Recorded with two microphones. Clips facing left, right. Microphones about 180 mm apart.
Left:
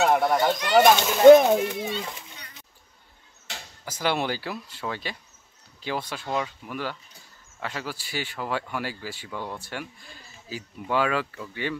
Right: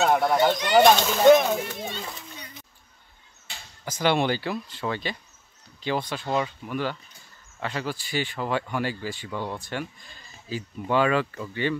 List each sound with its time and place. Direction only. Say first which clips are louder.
0.0 s speech: even; 5° left (ahead or behind)
3.5 s a sound: left 4 dB; 90° left
3.8 s speech: right 3 dB; 5° left (ahead or behind)